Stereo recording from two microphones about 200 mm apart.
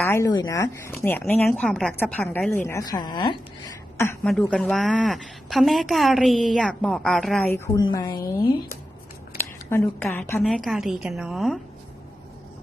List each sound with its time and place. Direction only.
0.1 s a woman's voice: 15° left (ahead or behind)
1.2 s a woman's voice: 5° left (ahead or behind)
7.5 s a woman's voice: 20° left (ahead or behind)
9.6 s a woman's voice: 10° left (ahead or behind)
10.4 s a woman's voice: centre (ahead or behind)